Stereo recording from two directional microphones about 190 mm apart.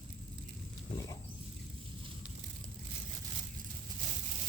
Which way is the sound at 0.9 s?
15° left (ahead or behind).